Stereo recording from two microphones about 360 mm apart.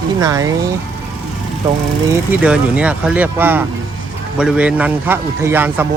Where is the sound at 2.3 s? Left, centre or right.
Centre.